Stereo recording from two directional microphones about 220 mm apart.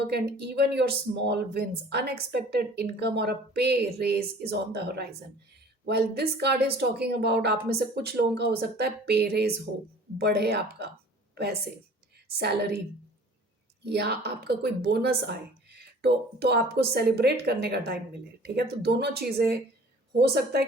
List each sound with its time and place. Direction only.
0.0 s speech: 50° right (ahead or behind)
12.3 s speech: 45° right (ahead or behind)
13.9 s speech: 50° right (ahead or behind)